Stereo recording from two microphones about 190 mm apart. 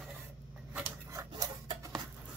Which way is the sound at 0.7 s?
15° right (ahead or behind).